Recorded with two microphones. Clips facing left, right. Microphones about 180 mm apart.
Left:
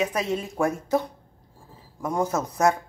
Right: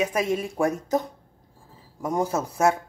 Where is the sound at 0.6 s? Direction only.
40° right (ahead or behind).